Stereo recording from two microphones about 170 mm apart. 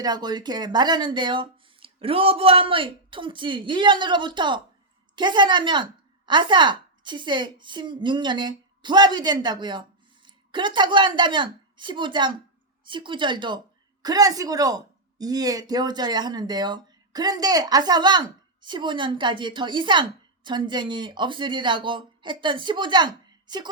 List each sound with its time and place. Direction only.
0.0 s a woman's voice: 25° right (ahead or behind)